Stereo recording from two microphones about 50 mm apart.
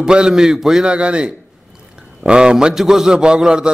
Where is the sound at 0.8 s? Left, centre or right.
Right.